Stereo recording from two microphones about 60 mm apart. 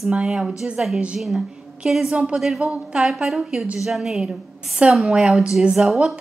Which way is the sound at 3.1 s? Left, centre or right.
Centre.